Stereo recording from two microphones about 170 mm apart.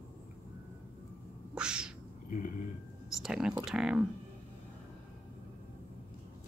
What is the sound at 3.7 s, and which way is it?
Speech, 5° right (ahead or behind).